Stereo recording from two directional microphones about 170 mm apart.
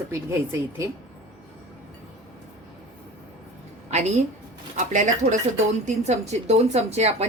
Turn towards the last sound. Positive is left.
turn(degrees=-40)  # may be behind; listen again after turning